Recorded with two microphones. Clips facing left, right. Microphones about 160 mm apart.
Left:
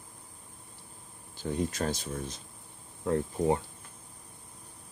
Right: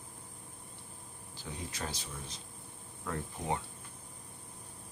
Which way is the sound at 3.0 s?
35° left (ahead or behind).